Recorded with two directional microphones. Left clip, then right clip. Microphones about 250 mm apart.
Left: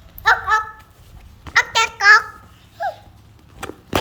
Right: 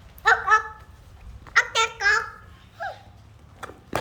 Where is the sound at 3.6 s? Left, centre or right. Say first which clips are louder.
Left 7 dB; left.